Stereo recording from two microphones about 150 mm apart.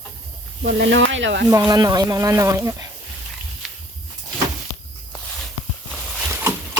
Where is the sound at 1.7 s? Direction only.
25° right (ahead or behind).